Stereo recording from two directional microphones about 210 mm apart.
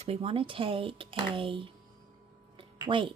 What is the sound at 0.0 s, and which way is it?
Speech, 30° right (ahead or behind).